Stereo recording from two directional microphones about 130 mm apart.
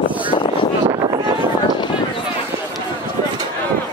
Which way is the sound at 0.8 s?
45° right (ahead or behind).